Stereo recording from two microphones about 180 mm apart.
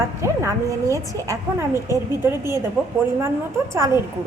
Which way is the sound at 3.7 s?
15° right (ahead or behind).